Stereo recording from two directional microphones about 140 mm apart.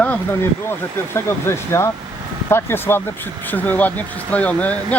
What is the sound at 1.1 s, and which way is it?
Speech, 20° left (ahead or behind).